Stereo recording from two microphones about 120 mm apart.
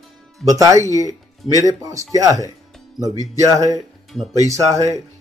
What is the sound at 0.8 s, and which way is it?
Speech, 30° left (ahead or behind).